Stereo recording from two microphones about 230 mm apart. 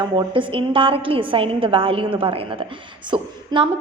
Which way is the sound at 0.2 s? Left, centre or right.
Right.